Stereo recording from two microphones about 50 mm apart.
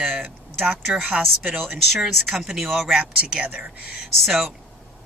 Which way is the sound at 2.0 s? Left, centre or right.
Centre.